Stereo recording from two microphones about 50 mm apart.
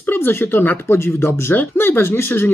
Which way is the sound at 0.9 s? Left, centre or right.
Left.